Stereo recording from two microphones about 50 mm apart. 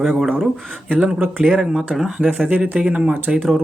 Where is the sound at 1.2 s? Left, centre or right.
Right.